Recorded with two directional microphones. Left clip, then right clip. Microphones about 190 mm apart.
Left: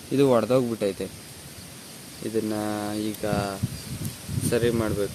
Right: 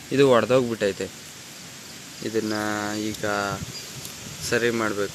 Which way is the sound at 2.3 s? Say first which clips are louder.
Right 2 dB; 5° left (ahead or behind).